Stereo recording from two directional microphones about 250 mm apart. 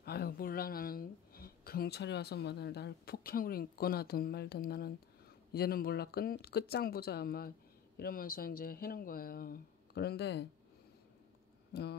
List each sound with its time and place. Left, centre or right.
0.0 s speech: left